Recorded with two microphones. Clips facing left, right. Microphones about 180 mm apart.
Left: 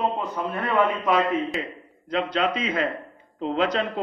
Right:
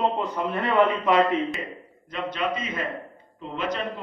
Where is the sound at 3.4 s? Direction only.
90° left.